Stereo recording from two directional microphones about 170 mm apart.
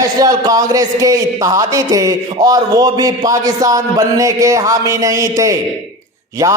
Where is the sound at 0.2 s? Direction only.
20° right (ahead or behind).